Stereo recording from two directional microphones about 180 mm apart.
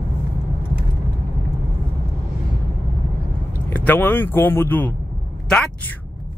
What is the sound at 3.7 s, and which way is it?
A woman's voice, 10° left (ahead or behind).